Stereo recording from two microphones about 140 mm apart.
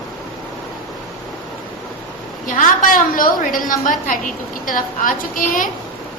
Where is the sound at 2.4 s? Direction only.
70° left (ahead or behind).